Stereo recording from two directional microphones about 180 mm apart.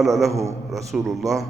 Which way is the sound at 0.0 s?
Centre (ahead or behind).